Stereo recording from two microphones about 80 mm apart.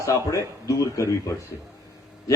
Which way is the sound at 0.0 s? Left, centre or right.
Left.